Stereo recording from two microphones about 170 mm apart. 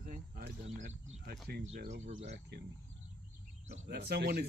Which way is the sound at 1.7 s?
45° right (ahead or behind).